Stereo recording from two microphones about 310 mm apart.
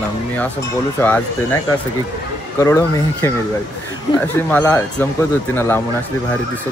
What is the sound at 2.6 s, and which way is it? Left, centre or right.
Speech, centre.